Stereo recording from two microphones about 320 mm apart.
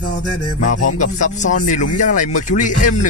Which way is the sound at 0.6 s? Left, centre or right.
Left.